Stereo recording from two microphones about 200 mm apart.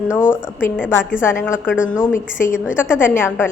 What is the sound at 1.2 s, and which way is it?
Speech, 10° left (ahead or behind).